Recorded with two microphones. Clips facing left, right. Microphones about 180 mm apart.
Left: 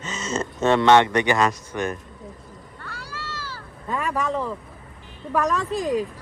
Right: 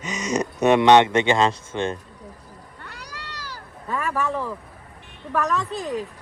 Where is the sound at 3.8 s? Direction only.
20° left (ahead or behind).